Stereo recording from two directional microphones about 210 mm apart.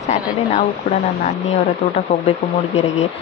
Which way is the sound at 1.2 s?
30° left (ahead or behind).